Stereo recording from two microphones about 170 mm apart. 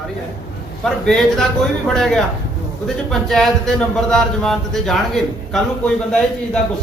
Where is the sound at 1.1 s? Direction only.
5° left (ahead or behind).